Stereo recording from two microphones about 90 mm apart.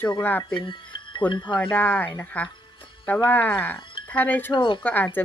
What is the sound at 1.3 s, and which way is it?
Speech, 60° left (ahead or behind).